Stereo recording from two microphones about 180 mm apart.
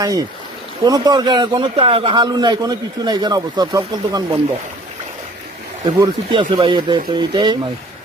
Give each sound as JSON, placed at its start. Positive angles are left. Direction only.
{"t": 0.0, "sound": "a man's voice", "side_deg": -20}
{"t": 5.8, "sound": "a man's voice", "side_deg": -25}